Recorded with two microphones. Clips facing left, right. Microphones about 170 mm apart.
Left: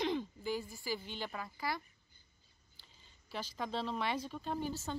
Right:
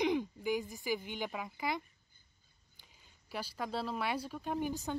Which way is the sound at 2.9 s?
10° right (ahead or behind).